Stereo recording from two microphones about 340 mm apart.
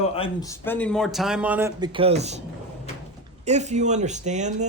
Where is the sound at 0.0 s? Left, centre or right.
Centre.